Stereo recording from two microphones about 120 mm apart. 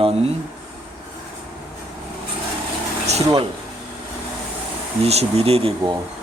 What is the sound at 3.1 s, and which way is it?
Speech, 65° right (ahead or behind).